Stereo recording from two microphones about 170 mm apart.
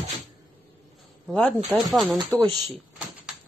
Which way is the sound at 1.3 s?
5° left (ahead or behind).